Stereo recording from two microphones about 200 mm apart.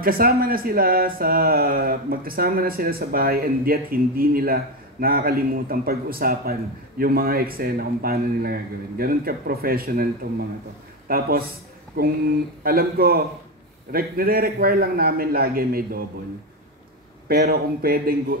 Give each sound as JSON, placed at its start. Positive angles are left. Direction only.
{"t": 0.0, "sound": "speech", "side_deg": -45}
{"t": 11.1, "sound": "speech", "side_deg": -45}
{"t": 17.3, "sound": "speech", "side_deg": -50}